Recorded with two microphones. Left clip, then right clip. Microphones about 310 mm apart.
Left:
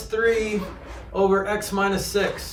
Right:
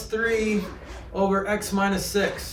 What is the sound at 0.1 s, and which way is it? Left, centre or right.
Speech, centre.